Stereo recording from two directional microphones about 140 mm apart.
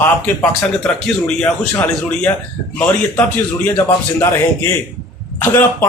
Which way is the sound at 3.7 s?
20° left (ahead or behind).